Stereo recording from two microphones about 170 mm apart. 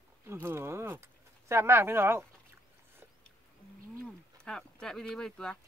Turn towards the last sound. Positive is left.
turn(degrees=5)  # may be behind; listen again after turning